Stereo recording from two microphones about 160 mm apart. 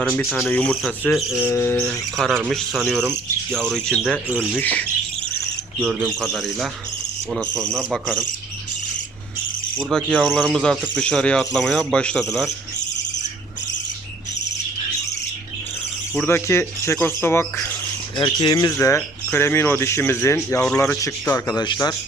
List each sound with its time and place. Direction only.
0.0 s speech: centre (ahead or behind)
1.4 s speech: 15° left (ahead or behind)
1.9 s speech: centre (ahead or behind)
5.8 s speech: 5° right (ahead or behind)
9.7 s speech: 5° left (ahead or behind)
16.1 s speech: 15° left (ahead or behind)
18.2 s speech: 25° left (ahead or behind)